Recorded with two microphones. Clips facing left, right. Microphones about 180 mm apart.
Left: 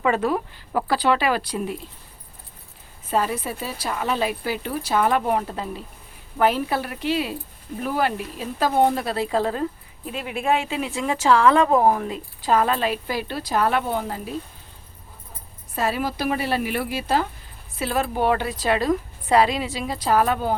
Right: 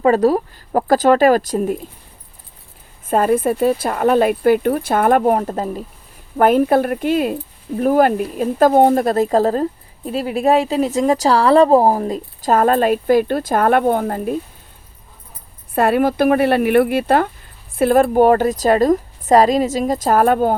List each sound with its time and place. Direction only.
0.0 s a woman's voice: 40° right (ahead or behind)
3.1 s a woman's voice: 50° right (ahead or behind)
15.7 s a woman's voice: 55° right (ahead or behind)